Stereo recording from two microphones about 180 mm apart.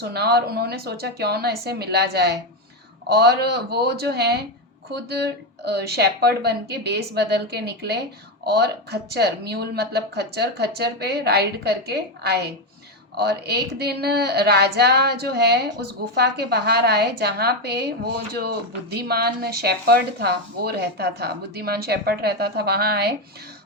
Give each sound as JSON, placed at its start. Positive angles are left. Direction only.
{"t": 0.0, "sound": "speech", "side_deg": -65}